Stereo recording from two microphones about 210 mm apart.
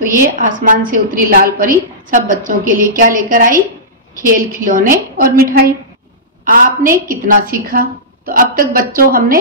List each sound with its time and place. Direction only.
0.4 s a woman's voice: 40° right (ahead or behind)